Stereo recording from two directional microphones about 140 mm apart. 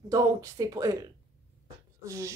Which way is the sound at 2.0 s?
20° right (ahead or behind).